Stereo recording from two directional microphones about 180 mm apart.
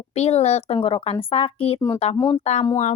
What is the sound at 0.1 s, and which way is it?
Speech, 35° left (ahead or behind).